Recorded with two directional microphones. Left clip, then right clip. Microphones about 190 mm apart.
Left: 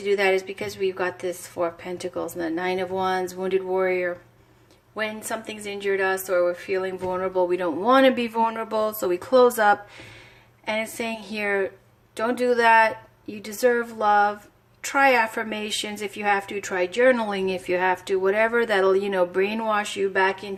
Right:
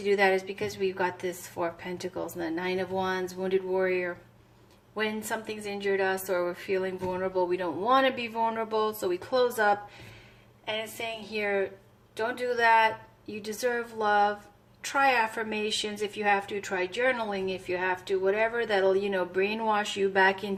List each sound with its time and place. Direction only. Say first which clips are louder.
0.0 s a woman's voice: left 3 dB; 20° left (ahead or behind)
10.7 s a woman's voice: left 6 dB; 40° left (ahead or behind); by 20.5 s 20° left (ahead or behind)